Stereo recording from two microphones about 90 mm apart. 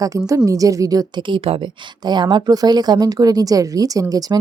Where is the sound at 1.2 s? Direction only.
75° right (ahead or behind).